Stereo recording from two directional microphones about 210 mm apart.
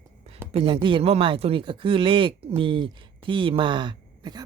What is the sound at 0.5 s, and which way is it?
Speech, 25° right (ahead or behind).